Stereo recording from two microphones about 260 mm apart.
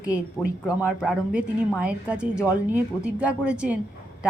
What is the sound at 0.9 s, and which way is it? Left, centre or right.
A woman's voice, centre.